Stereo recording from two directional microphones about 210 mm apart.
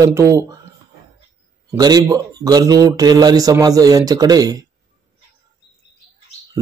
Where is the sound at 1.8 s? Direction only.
20° right (ahead or behind).